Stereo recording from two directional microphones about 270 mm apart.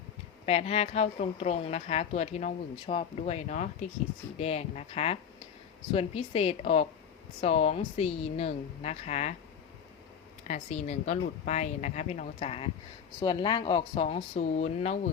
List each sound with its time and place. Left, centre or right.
0.4 s a woman's voice: left
10.4 s a woman's voice: left